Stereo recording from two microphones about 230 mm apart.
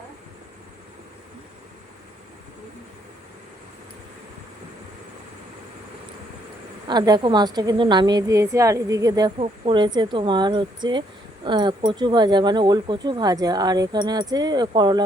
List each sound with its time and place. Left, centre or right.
6.8 s a woman's voice: centre